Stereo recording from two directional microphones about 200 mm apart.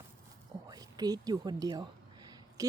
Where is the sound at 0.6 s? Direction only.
20° right (ahead or behind).